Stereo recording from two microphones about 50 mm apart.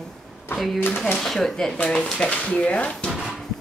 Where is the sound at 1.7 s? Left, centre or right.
Left.